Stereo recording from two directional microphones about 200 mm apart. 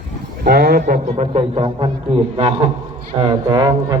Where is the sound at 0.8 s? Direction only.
35° right (ahead or behind); by 4.0 s 15° right (ahead or behind).